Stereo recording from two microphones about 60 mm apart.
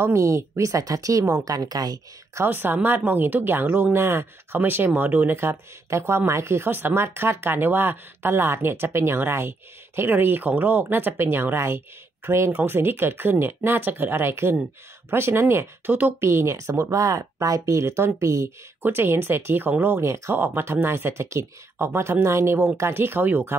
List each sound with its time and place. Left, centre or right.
0.0 s speech: right
2.4 s speech: right
5.3 s speech: right
18.8 s speech: right
20.0 s speech: right
20.3 s speech: right